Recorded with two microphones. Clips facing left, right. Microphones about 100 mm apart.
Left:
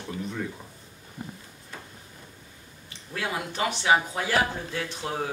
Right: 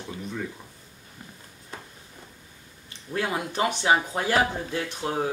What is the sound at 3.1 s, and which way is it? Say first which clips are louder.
Speech: right 3 dB; 20° right (ahead or behind).